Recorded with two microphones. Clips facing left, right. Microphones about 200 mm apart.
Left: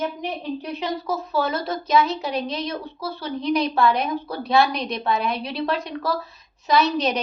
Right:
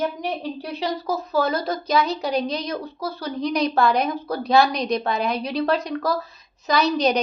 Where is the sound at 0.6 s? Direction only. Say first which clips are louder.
Right 3 dB; 35° right (ahead or behind).